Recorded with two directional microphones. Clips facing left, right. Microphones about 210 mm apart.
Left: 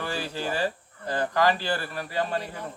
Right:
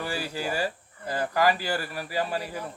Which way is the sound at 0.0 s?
10° right (ahead or behind).